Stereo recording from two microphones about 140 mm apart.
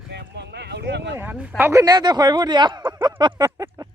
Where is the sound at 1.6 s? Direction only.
20° right (ahead or behind).